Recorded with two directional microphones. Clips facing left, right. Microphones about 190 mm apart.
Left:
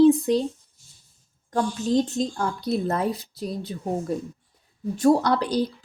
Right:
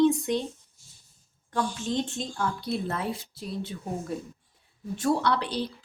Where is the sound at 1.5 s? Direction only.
40° left (ahead or behind).